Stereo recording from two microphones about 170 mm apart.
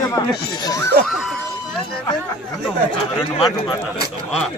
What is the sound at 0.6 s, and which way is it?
Speech, 20° left (ahead or behind).